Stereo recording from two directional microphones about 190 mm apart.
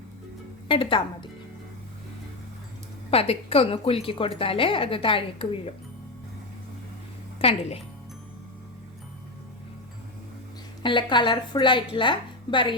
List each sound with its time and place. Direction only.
0.7 s a woman's voice: 25° left (ahead or behind)
3.1 s a woman's voice: 30° left (ahead or behind)
7.3 s speech: 30° left (ahead or behind)
10.8 s a woman's voice: 25° left (ahead or behind)